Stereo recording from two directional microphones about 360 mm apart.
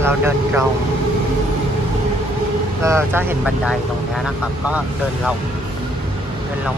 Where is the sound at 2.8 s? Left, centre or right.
Centre.